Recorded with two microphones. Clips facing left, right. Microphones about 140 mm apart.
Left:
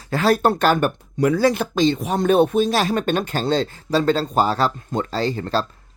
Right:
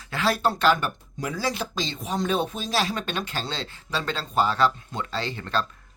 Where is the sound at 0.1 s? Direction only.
40° left (ahead or behind).